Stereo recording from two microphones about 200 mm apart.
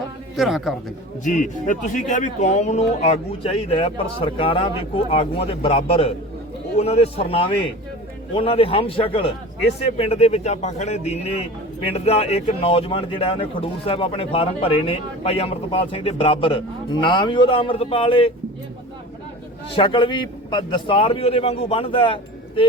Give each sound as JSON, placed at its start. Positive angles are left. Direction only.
{"t": 0.3, "sound": "a man's voice", "side_deg": 0}
{"t": 1.2, "sound": "speech", "side_deg": 40}
{"t": 19.7, "sound": "speech", "side_deg": 25}